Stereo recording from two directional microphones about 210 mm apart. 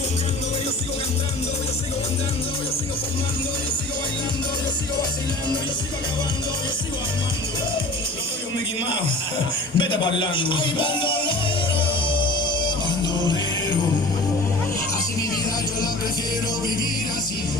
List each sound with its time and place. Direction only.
9.7 s speech: 25° left (ahead or behind)
12.0 s music: 25° left (ahead or behind)